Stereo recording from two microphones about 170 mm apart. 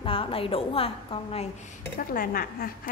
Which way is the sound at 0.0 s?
30° left (ahead or behind).